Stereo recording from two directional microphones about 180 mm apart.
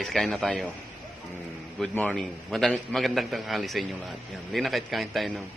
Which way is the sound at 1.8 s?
5° left (ahead or behind).